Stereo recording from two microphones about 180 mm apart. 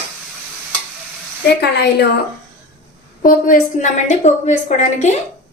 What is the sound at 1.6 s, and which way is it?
Speech, 65° left (ahead or behind).